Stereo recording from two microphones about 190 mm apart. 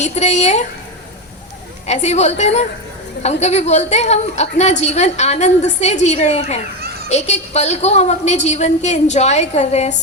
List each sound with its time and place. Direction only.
0.0 s a woman's voice: 35° left (ahead or behind)
1.9 s a woman's voice: 35° left (ahead or behind)